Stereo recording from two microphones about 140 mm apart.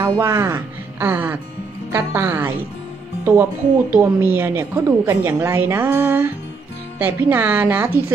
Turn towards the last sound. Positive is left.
turn(degrees=-15)  # may be behind; listen again after turning